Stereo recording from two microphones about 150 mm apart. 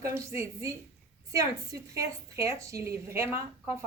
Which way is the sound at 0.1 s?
20° right (ahead or behind).